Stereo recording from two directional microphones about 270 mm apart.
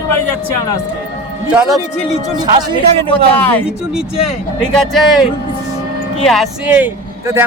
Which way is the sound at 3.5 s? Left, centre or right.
Centre.